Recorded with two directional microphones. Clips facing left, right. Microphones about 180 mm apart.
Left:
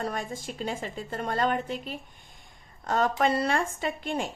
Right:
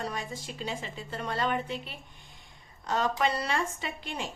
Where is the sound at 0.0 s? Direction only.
50° left (ahead or behind).